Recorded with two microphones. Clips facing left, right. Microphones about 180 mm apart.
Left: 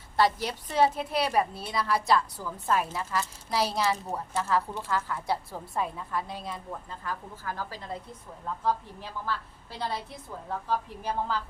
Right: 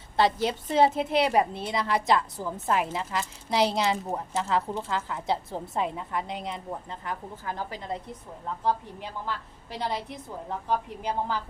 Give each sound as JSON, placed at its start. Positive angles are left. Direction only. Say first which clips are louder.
{"t": 0.2, "sound": "a woman's voice", "louder": "right 2 dB", "side_deg": -25}